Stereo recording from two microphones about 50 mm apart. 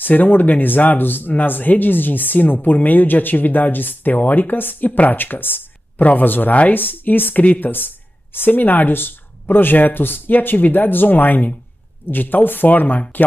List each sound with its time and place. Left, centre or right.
0.0 s speech: left